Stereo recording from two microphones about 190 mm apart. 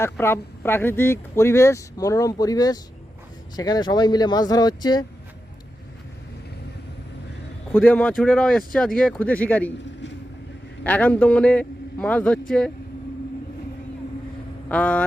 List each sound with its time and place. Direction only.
0.0 s speech: 10° left (ahead or behind)
7.8 s speech: 5° left (ahead or behind)
10.8 s speech: 10° left (ahead or behind)
14.7 s speech: 5° left (ahead or behind)